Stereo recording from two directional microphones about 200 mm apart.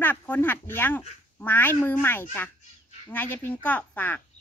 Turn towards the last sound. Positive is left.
turn(degrees=10)  # may be behind; listen again after turning